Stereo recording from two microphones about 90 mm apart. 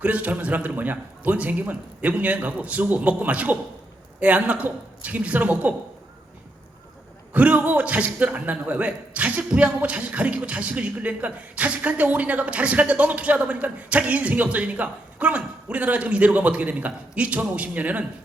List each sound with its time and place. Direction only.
0.0 s a man's voice: 15° right (ahead or behind)
7.3 s a man's voice: 15° right (ahead or behind)